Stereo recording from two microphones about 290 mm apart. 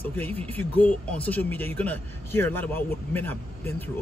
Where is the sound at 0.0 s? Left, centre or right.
Centre.